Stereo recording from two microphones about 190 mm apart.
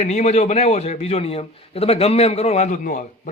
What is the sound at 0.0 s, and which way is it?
A man's voice, 40° left (ahead or behind).